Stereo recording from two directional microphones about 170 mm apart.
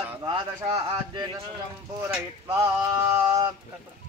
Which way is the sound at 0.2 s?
30° right (ahead or behind).